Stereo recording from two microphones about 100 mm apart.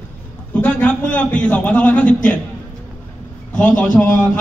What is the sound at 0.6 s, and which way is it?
A man's voice, 15° left (ahead or behind).